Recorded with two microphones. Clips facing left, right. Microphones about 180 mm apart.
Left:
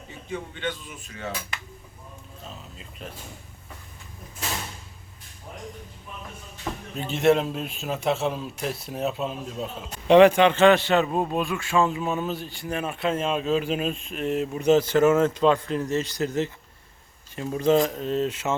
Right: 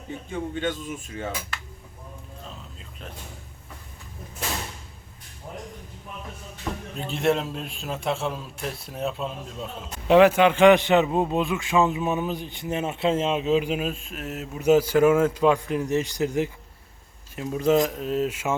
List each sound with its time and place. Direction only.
0.6 s speech: 45° right (ahead or behind)
6.9 s a man's voice: centre (ahead or behind); by 16.5 s 15° right (ahead or behind)
17.4 s a man's voice: centre (ahead or behind)